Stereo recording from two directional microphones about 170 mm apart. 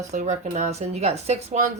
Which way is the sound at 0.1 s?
45° right (ahead or behind).